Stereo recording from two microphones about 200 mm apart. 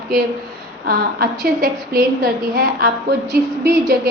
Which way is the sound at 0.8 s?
50° right (ahead or behind).